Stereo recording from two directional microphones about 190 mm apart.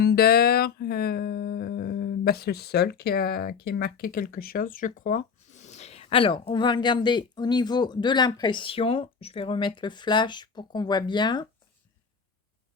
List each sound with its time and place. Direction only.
0.0 s music: 55° left (ahead or behind); by 11.4 s 25° left (ahead or behind)